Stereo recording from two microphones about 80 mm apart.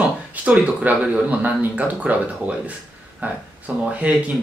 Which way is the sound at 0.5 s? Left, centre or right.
Centre.